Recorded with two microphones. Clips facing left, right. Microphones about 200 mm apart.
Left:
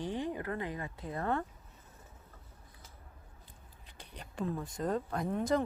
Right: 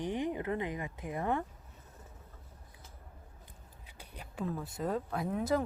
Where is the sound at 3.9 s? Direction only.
10° right (ahead or behind).